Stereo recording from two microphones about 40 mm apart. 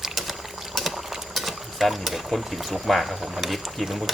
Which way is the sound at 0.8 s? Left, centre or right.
Centre.